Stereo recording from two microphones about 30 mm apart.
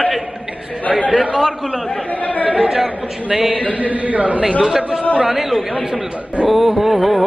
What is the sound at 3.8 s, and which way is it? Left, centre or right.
Speech, right.